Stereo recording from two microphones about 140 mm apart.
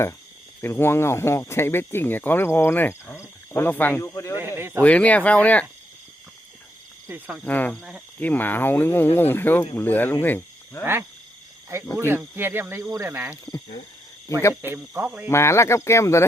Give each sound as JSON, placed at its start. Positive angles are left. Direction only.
{"t": 0.6, "sound": "speech", "side_deg": 15}
{"t": 4.4, "sound": "speech", "side_deg": -15}
{"t": 4.8, "sound": "speech", "side_deg": 10}
{"t": 7.1, "sound": "speech", "side_deg": -5}
{"t": 7.4, "sound": "speech", "side_deg": 10}
{"t": 7.8, "sound": "speech", "side_deg": -5}
{"t": 8.2, "sound": "speech", "side_deg": 10}
{"t": 11.9, "sound": "speech", "side_deg": -15}
{"t": 13.3, "sound": "speech", "side_deg": 30}
{"t": 14.5, "sound": "speech", "side_deg": -15}
{"t": 15.3, "sound": "speech", "side_deg": 20}